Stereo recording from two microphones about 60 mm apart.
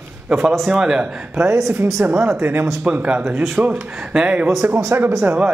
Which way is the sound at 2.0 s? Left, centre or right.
Right.